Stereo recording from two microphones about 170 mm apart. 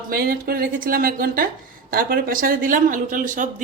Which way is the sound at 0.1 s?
60° right (ahead or behind).